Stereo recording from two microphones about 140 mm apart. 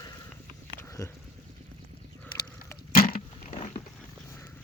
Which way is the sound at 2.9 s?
90° left.